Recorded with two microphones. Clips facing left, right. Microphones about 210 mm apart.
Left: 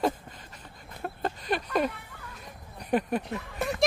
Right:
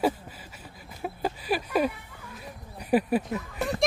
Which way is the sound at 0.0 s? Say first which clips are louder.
Right 2 dB; 5° right (ahead or behind).